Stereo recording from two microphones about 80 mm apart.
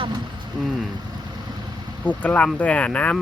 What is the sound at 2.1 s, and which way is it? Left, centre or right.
Speech, centre.